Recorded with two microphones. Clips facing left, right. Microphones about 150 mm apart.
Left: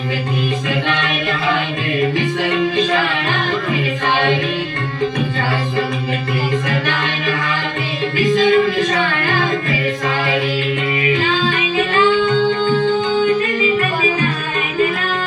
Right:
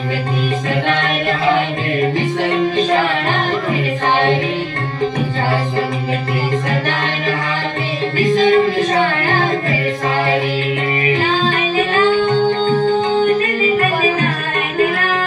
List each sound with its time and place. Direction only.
0.9 s music: 45° right (ahead or behind)
6.7 s music: 35° right (ahead or behind)
11.0 s music: 35° right (ahead or behind)